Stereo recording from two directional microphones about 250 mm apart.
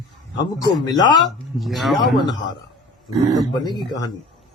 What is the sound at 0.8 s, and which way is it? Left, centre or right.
Speech, centre.